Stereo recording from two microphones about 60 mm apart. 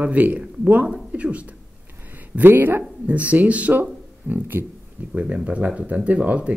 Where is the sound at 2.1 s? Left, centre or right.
Right.